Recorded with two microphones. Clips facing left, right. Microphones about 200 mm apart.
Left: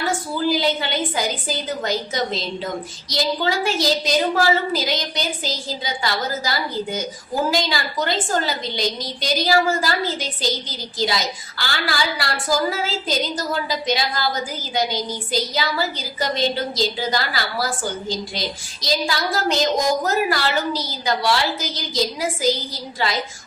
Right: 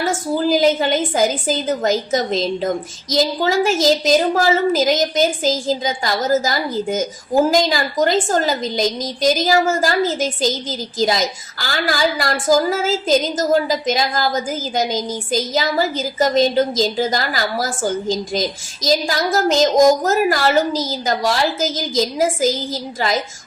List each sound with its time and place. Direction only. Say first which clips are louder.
0.0 s a woman's voice: right 4 dB; 45° right (ahead or behind)